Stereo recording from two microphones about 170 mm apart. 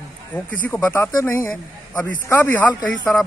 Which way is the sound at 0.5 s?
10° left (ahead or behind).